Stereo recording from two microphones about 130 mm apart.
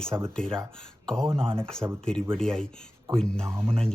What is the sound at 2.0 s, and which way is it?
Speech, 5° left (ahead or behind).